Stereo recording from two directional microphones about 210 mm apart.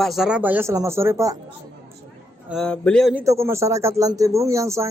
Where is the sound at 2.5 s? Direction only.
5° left (ahead or behind).